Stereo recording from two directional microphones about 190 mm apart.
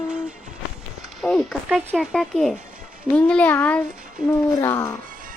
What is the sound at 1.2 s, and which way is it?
Speech, 5° left (ahead or behind).